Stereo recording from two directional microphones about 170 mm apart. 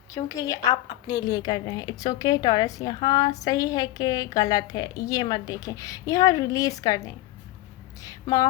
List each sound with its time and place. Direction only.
0.1 s a woman's voice: 20° left (ahead or behind)